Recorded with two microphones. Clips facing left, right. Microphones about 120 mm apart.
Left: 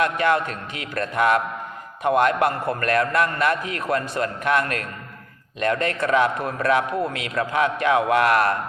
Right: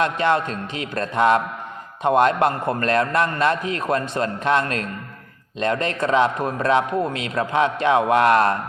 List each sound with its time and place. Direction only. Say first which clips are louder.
0.0 s a man's voice: right 1 dB; 25° right (ahead or behind)